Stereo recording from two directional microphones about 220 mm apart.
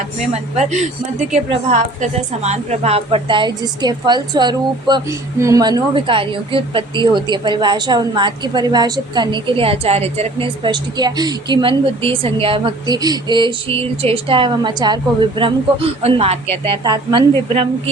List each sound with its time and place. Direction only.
0.5 s a woman's voice: 30° right (ahead or behind)